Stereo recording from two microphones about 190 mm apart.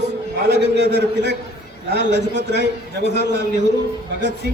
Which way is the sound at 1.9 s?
65° right (ahead or behind).